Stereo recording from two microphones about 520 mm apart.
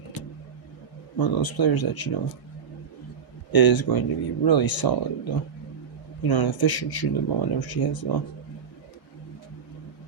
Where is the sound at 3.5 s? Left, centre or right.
Left.